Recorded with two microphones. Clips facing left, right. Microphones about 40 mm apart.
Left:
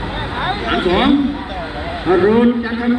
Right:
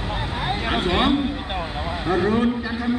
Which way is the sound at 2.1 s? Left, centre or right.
Left.